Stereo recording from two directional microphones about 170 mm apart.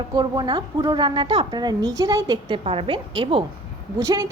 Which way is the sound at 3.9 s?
20° right (ahead or behind).